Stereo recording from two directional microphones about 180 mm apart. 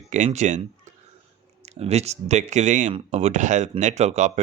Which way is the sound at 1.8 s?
35° right (ahead or behind).